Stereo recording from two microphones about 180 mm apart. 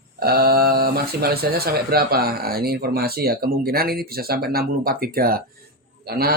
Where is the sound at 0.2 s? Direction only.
60° right (ahead or behind).